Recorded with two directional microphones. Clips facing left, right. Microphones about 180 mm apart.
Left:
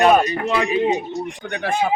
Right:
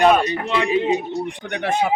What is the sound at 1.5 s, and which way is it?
Speech, 20° right (ahead or behind).